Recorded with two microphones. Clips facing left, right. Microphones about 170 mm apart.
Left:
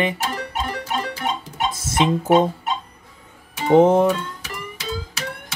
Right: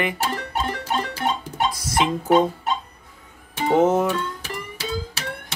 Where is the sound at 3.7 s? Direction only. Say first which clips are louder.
Left 5 dB; 30° left (ahead or behind).